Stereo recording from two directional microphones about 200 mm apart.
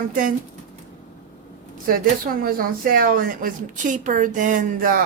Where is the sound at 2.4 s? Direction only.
45° right (ahead or behind).